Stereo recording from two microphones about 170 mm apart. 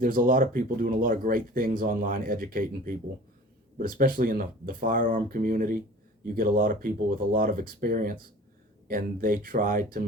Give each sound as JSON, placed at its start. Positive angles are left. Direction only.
{"t": 0.0, "sound": "speech", "side_deg": -55}